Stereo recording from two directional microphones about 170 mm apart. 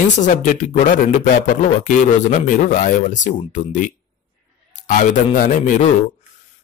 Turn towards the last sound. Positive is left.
turn(degrees=50)  # may be behind; listen again after turning